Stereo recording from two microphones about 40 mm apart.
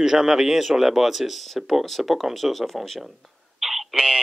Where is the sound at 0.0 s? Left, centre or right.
Centre.